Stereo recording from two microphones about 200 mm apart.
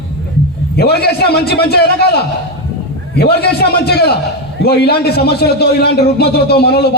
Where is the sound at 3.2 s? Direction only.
50° left (ahead or behind).